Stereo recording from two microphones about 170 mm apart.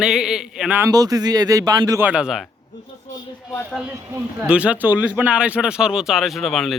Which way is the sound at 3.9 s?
10° right (ahead or behind).